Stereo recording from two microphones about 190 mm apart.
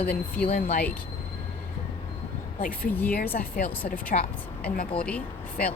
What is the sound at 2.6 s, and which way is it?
Speech, 50° left (ahead or behind).